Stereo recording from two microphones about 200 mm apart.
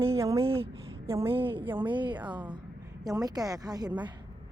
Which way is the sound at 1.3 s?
25° right (ahead or behind).